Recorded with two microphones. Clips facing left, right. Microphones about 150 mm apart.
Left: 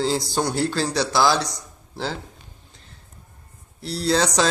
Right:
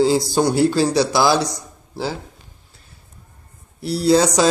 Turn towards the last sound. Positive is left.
turn(degrees=-10)  # may be behind; listen again after turning